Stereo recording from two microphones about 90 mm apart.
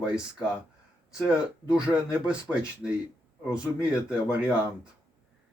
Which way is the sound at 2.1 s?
10° right (ahead or behind).